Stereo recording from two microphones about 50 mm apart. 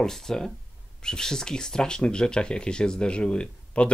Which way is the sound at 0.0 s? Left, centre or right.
Centre.